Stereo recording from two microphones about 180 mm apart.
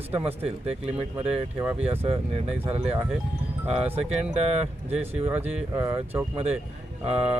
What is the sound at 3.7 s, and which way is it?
Speech, 5° right (ahead or behind).